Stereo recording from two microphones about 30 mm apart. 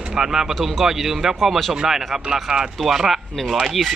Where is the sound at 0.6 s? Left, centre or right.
Centre.